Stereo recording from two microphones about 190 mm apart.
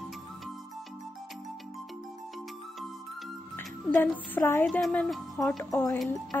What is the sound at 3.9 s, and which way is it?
A woman's voice, 10° left (ahead or behind).